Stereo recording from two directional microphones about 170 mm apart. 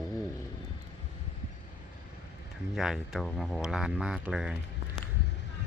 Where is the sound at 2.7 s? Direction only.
Centre (ahead or behind).